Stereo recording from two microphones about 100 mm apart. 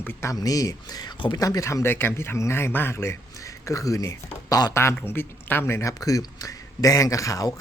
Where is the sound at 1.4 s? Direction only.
35° left (ahead or behind).